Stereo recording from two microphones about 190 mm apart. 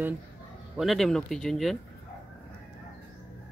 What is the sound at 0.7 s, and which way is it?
Speech, centre (ahead or behind).